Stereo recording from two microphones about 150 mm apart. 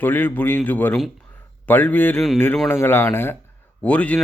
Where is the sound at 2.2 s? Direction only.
Centre (ahead or behind).